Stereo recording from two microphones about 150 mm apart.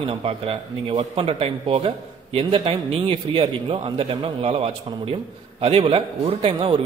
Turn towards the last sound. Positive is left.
turn(degrees=-35)  # may be behind; listen again after turning